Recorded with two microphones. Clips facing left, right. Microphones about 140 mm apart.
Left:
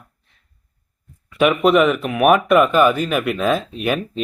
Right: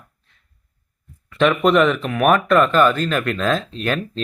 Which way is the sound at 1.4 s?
5° left (ahead or behind).